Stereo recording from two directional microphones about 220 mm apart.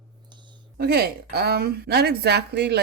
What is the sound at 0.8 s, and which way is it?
Speech, 45° right (ahead or behind).